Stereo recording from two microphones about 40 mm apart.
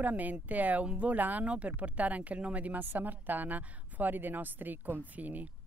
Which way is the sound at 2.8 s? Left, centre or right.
Right.